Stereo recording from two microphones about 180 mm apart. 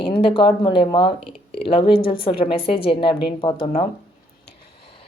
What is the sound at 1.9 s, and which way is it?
Speech, 55° left (ahead or behind).